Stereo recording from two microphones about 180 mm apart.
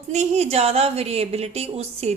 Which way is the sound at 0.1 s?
40° right (ahead or behind).